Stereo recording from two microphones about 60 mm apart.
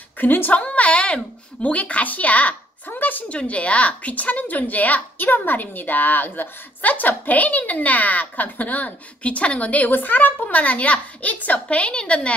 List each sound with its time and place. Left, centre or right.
0.2 s a woman's voice: left
3.3 s a woman's voice: centre